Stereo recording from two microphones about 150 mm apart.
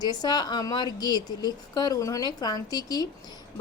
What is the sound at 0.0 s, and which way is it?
A woman's voice, 25° left (ahead or behind).